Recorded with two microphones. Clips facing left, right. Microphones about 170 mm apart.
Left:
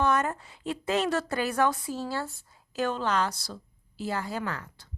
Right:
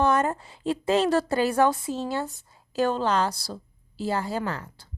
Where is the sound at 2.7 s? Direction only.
30° right (ahead or behind).